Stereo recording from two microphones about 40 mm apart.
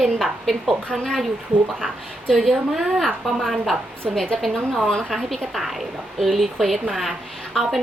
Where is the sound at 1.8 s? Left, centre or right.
Centre.